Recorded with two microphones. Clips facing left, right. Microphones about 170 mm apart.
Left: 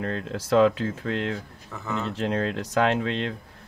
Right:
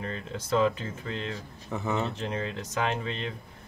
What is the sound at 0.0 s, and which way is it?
Speech, 90° left.